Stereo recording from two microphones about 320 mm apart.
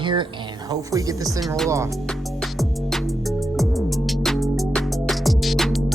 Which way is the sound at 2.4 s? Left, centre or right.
Centre.